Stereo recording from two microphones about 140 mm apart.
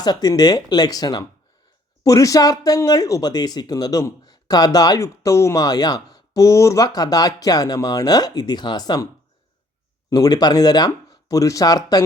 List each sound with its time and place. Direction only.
0.0 s speech: 30° left (ahead or behind)
10.1 s speech: 25° left (ahead or behind)